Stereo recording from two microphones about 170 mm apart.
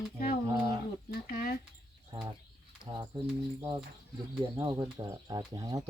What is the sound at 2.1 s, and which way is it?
Speech, 30° right (ahead or behind).